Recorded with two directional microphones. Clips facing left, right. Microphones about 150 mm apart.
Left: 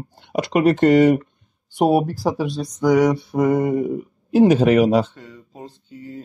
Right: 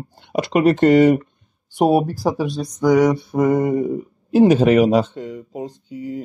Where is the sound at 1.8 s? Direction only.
40° right (ahead or behind).